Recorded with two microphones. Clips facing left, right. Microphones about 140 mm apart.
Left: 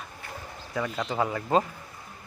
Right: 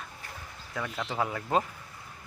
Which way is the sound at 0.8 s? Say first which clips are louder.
Left 4 dB; centre (ahead or behind).